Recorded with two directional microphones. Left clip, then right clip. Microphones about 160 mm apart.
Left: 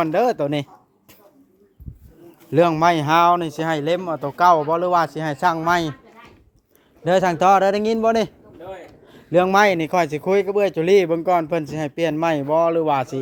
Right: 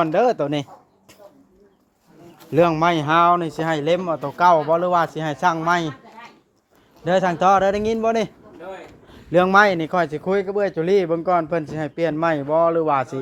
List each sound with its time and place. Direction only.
0.0 s speech: 30° left (ahead or behind)
2.5 s speech: 35° left (ahead or behind); by 5.9 s 50° left (ahead or behind)
7.0 s speech: 55° left (ahead or behind); by 8.3 s 35° left (ahead or behind)
9.3 s speech: 30° left (ahead or behind)